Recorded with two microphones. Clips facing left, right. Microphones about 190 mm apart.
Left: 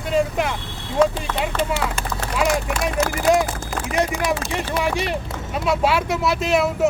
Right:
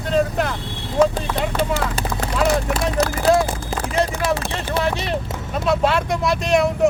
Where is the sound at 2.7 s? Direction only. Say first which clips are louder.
Right 2 dB; 35° right (ahead or behind).